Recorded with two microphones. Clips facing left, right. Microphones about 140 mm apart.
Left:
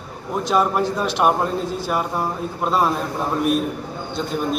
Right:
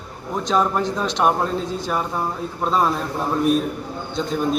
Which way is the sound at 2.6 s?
5° left (ahead or behind).